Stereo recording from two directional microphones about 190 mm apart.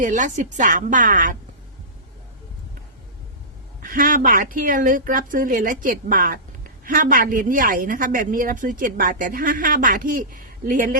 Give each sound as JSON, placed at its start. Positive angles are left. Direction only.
{"t": 0.0, "sound": "a woman's voice", "side_deg": -40}
{"t": 3.8, "sound": "a woman's voice", "side_deg": -45}